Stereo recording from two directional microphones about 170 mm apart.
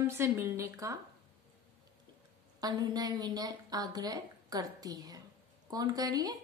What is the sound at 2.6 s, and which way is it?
A woman's voice, 20° right (ahead or behind).